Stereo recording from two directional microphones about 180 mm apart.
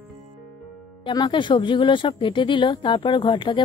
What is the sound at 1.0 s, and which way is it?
Speech, 25° left (ahead or behind).